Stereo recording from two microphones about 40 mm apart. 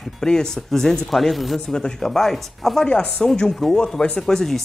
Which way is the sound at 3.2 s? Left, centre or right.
Centre.